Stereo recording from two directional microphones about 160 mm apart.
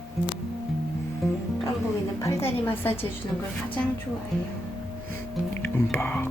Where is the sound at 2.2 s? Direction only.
15° left (ahead or behind).